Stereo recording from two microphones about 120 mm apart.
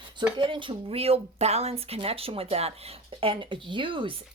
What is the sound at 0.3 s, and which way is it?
Speech, 45° right (ahead or behind).